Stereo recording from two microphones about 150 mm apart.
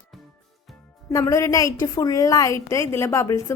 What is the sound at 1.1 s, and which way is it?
A woman's voice, 20° left (ahead or behind).